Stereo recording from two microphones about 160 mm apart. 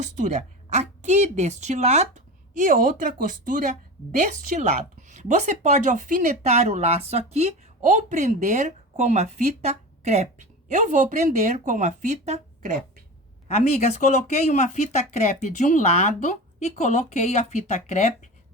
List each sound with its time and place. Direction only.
0.0 s a woman's voice: 50° right (ahead or behind)
13.5 s speech: 45° left (ahead or behind)